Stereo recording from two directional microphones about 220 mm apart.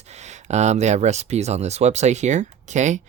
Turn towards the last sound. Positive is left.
turn(degrees=-35)  # may be behind; listen again after turning